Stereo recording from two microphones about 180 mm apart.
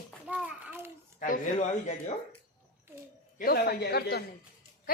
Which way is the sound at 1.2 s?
45° left (ahead or behind).